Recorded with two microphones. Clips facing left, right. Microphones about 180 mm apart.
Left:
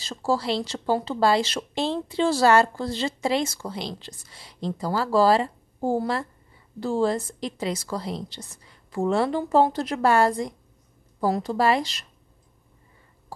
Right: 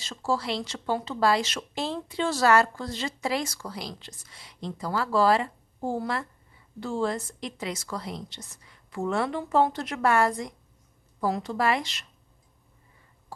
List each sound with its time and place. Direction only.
0.0 s speech: 35° left (ahead or behind)